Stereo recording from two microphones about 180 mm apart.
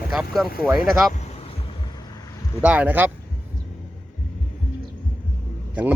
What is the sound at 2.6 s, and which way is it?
Speech, 10° right (ahead or behind).